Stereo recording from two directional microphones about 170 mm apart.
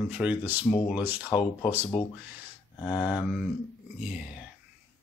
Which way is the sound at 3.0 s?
5° right (ahead or behind).